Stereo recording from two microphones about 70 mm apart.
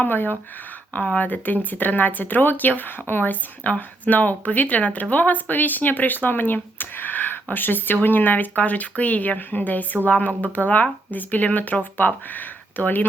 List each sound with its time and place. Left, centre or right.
0.0 s speech: left